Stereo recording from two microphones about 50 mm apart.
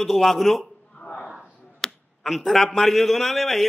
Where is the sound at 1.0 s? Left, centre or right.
Left.